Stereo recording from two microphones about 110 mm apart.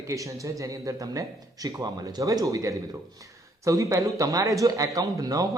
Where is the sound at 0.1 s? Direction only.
30° right (ahead or behind).